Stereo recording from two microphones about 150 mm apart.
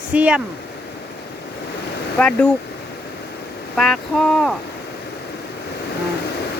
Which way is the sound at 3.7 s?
Centre (ahead or behind).